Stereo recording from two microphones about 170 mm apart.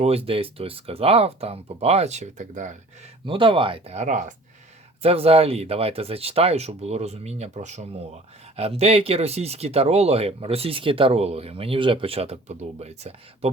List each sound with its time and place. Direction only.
0.0 s speech: 35° right (ahead or behind)
3.2 s speech: 30° right (ahead or behind); by 4.4 s 45° right (ahead or behind)
5.0 s speech: 35° right (ahead or behind)